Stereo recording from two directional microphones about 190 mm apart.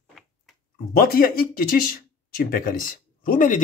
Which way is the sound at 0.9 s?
50° left (ahead or behind).